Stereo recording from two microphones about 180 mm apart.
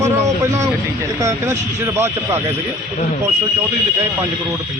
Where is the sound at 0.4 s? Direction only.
15° right (ahead or behind).